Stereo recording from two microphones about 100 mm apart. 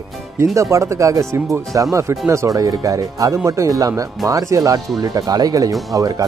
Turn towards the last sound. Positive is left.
turn(degrees=-35)  # may be behind; listen again after turning